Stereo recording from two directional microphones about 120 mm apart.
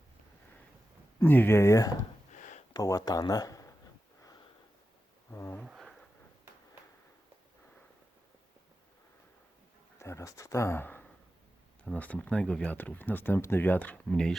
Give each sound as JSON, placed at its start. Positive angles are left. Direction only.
{"t": 1.2, "sound": "speech", "side_deg": 15}
{"t": 2.3, "sound": "a sound", "side_deg": 90}
{"t": 2.7, "sound": "speech", "side_deg": 30}
{"t": 5.3, "sound": "speech", "side_deg": 20}
{"t": 5.6, "sound": "a sound", "side_deg": -5}
{"t": 10.0, "sound": "speech", "side_deg": 25}